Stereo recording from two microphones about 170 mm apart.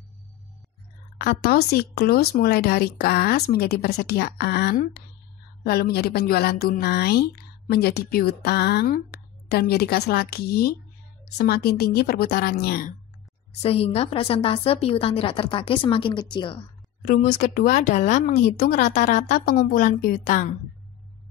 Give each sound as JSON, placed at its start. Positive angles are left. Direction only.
{"t": 1.1, "sound": "speech", "side_deg": 65}
{"t": 13.6, "sound": "a woman's voice", "side_deg": 35}
{"t": 17.0, "sound": "speech", "side_deg": 50}